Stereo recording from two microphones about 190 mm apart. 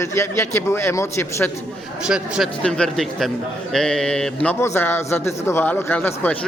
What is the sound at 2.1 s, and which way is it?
A man's voice, 5° right (ahead or behind).